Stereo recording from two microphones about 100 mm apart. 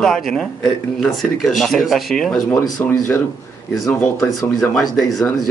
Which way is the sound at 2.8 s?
20° left (ahead or behind).